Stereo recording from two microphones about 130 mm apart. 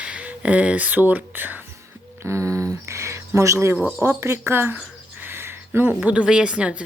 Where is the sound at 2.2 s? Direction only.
20° right (ahead or behind).